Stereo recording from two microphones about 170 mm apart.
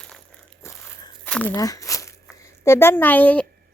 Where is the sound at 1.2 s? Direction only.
10° left (ahead or behind).